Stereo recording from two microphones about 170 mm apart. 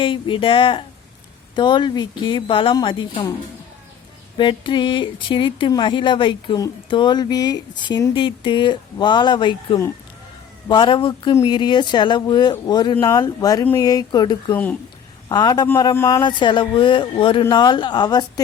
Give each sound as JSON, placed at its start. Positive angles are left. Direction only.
{"t": 0.0, "sound": "speech", "side_deg": 30}
{"t": 4.4, "sound": "speech", "side_deg": 30}
{"t": 14.5, "sound": "speech", "side_deg": 10}
{"t": 15.3, "sound": "speech", "side_deg": 25}